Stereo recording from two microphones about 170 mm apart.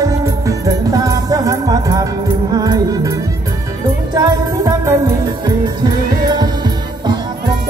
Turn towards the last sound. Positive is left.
turn(degrees=-25)  # may be behind; listen again after turning